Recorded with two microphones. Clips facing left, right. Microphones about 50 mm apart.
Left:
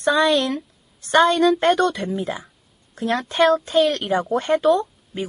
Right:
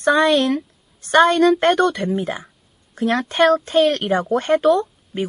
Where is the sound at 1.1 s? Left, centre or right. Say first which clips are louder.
Right 2 dB; right.